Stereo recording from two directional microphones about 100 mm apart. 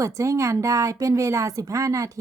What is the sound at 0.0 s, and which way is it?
A woman's voice, 30° right (ahead or behind).